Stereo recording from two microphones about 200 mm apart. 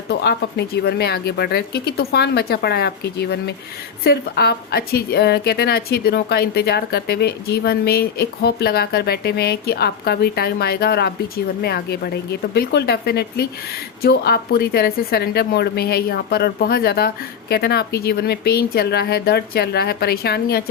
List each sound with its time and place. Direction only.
0.1 s a woman's voice: 55° left (ahead or behind)